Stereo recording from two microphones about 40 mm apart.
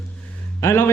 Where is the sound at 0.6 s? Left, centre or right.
Left.